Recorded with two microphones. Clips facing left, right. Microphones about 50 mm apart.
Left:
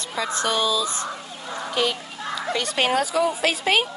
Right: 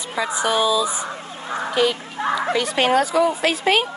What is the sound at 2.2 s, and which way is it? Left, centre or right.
Speech, right.